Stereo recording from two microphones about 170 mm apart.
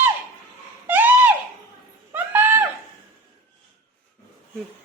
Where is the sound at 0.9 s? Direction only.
10° right (ahead or behind).